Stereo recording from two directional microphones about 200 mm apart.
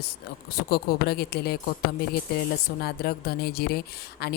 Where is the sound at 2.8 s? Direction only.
50° left (ahead or behind).